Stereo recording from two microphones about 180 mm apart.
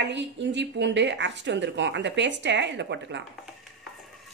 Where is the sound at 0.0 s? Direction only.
80° right.